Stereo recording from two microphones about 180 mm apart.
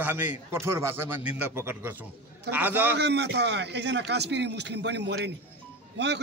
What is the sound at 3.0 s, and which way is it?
A man's voice, 70° right (ahead or behind).